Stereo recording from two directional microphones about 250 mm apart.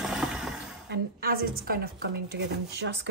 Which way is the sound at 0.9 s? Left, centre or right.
Right.